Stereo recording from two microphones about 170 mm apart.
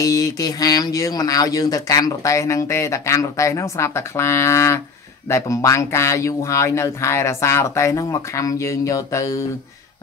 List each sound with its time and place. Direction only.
0.0 s speech: 20° left (ahead or behind)